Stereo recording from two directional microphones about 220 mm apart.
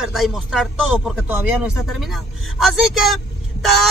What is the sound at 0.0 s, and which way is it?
Speech, centre (ahead or behind).